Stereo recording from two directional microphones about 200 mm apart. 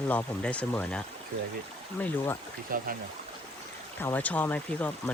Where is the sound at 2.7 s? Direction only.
45° right (ahead or behind).